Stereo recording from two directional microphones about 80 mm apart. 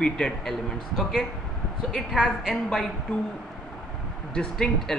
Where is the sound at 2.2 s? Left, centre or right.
Centre.